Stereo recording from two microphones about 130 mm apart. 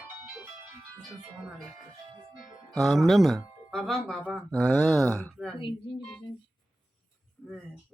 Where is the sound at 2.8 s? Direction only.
Centre (ahead or behind).